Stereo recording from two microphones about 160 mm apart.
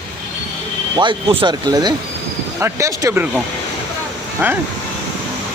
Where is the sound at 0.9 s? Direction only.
30° right (ahead or behind).